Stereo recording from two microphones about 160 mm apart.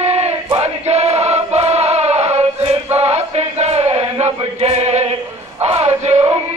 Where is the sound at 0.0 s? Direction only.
40° right (ahead or behind).